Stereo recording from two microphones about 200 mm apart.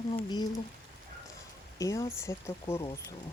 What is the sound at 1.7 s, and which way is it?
Speech, 15° left (ahead or behind).